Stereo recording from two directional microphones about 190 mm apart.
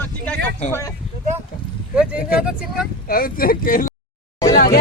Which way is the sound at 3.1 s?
50° left (ahead or behind).